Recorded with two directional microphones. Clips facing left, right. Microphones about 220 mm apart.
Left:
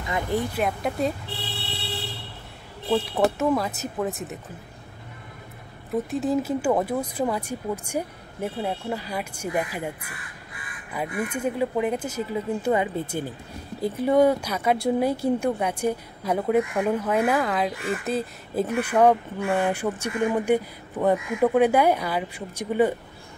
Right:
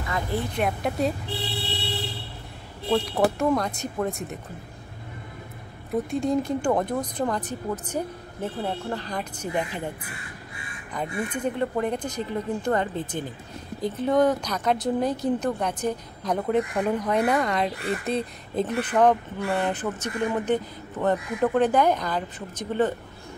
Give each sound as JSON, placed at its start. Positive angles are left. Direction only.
{"t": 0.1, "sound": "speech", "side_deg": 15}
{"t": 0.6, "sound": "speech", "side_deg": 0}
{"t": 2.9, "sound": "speech", "side_deg": 0}
{"t": 6.0, "sound": "speech", "side_deg": 5}
{"t": 10.5, "sound": "crow", "side_deg": -25}
{"t": 11.2, "sound": "speech", "side_deg": 10}